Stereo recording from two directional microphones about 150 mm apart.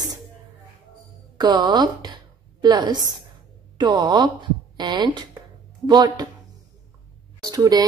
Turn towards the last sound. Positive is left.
turn(degrees=-25)  # may be behind; listen again after turning